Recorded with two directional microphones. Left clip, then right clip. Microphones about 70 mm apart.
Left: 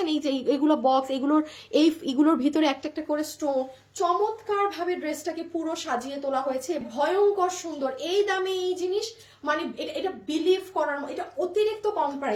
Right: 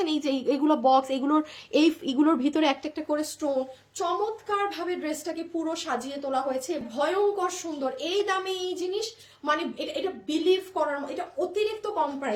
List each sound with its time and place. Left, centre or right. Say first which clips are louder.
0.0 s speech: left 1 dB; right
1.7 s a woman's voice: left 1 dB; centre
2.8 s a woman's voice: even; right